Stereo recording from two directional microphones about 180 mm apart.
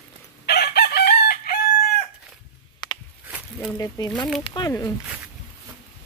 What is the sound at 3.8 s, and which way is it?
Speech, 20° left (ahead or behind).